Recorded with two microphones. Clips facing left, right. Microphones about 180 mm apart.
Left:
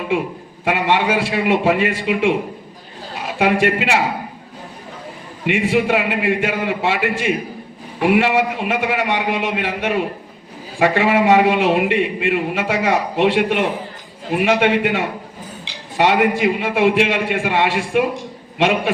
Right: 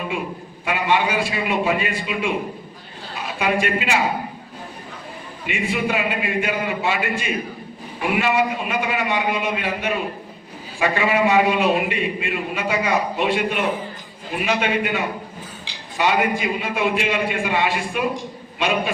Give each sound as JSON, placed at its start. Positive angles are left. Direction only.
{"t": 0.6, "sound": "a man's voice", "side_deg": 80}
{"t": 5.5, "sound": "a man's voice", "side_deg": 90}